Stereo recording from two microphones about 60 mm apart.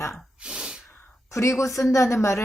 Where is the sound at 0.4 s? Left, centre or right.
Centre.